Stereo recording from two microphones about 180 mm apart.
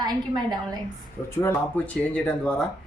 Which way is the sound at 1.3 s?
15° left (ahead or behind).